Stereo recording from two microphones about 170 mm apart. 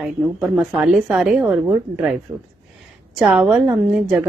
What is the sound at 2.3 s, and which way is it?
Speech, 25° right (ahead or behind).